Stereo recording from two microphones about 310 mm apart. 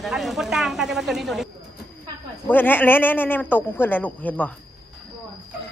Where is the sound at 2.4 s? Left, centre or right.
Centre.